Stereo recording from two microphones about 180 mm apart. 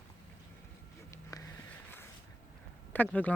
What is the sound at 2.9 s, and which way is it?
Speech, 10° left (ahead or behind).